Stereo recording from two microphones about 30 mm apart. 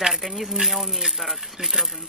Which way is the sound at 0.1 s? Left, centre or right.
Centre.